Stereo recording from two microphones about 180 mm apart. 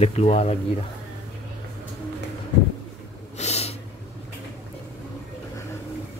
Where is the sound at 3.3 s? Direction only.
35° left (ahead or behind).